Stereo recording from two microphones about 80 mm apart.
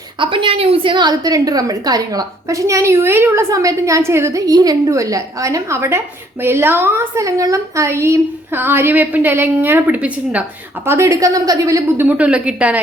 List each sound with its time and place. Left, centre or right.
0.2 s a woman's voice: right
3.5 s a woman's voice: right; by 10.4 s centre
10.8 s a woman's voice: right
11.9 s speech: centre